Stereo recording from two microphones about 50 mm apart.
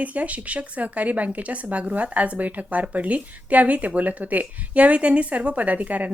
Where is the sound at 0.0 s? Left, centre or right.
Right.